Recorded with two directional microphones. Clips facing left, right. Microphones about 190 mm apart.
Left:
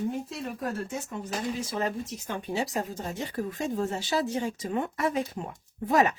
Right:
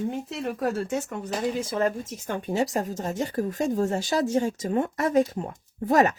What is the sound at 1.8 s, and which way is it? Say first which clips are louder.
Speech: right 5 dB; 50° right (ahead or behind).